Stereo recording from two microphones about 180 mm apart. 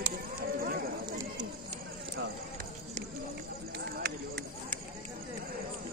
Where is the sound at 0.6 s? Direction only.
55° right (ahead or behind).